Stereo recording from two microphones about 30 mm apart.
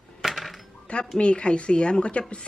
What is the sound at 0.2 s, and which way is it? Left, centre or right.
Coin, centre.